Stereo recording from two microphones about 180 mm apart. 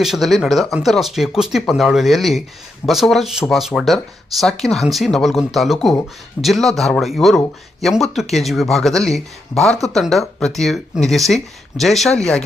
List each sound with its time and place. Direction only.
0.0 s speech: centre (ahead or behind)